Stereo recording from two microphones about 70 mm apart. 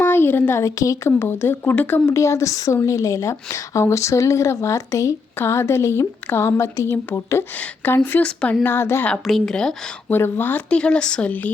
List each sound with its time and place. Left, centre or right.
0.0 s a sound: left
0.6 s speech: left
1.2 s speech: left
1.7 s speech: left
2.0 s speech: left
7.6 s speech: left
8.2 s speech: centre
8.6 s speech: left
9.2 s speech: centre
10.1 s speech: left
10.7 s speech: centre